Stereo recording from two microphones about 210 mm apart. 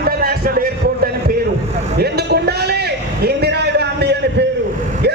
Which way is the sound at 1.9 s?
50° right (ahead or behind).